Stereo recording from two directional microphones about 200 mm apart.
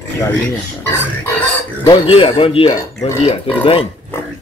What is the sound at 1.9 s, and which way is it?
Speech, 25° left (ahead or behind).